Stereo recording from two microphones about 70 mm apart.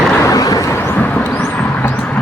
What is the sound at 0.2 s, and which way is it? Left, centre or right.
Vehicle, left.